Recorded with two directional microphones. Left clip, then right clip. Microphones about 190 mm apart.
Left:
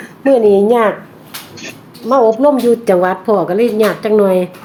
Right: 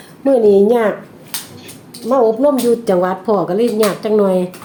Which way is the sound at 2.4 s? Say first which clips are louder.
Left 3 dB; 5° right (ahead or behind).